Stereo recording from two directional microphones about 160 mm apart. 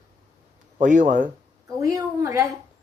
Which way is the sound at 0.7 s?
50° right (ahead or behind).